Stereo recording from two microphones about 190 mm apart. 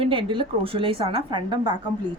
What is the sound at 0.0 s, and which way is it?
Speech, 25° right (ahead or behind).